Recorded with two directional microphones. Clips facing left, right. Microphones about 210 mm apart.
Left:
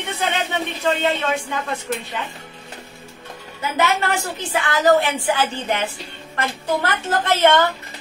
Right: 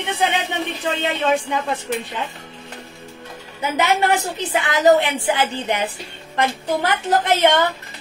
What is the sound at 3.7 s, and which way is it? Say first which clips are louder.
A woman's voice: right 2 dB; 20° right (ahead or behind).